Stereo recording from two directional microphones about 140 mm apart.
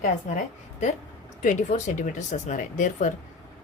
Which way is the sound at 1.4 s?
65° left (ahead or behind).